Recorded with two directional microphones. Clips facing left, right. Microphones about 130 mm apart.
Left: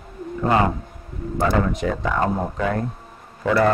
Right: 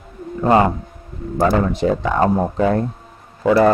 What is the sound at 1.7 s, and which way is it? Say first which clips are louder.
A man's voice: right 5 dB; 30° right (ahead or behind).